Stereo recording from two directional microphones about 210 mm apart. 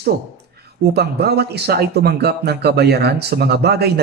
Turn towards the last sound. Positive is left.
turn(degrees=-50)  # may be behind; listen again after turning